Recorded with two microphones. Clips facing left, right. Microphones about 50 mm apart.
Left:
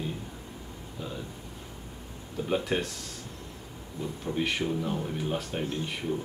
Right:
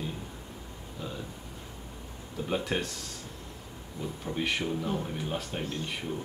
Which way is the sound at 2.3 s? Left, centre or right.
Centre.